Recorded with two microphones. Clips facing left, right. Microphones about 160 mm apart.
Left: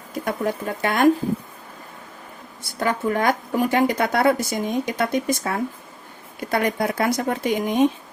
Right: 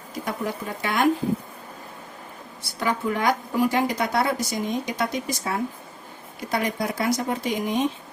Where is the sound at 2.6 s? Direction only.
50° left (ahead or behind).